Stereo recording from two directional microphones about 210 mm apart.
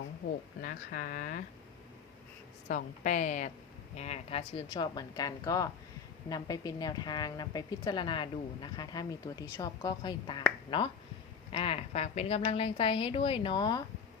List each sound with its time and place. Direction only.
0.6 s speech: 45° left (ahead or behind)
2.6 s a woman's voice: 40° left (ahead or behind); by 13.8 s 20° left (ahead or behind)